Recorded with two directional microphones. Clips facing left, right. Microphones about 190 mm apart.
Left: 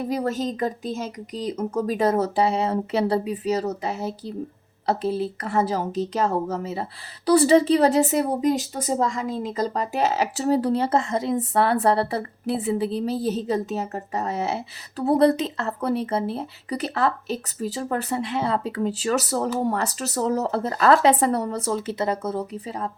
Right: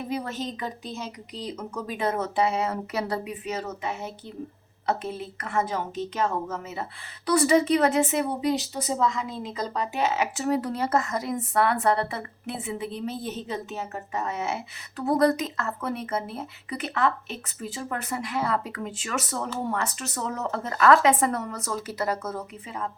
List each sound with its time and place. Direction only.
0.1 s speech: 40° left (ahead or behind)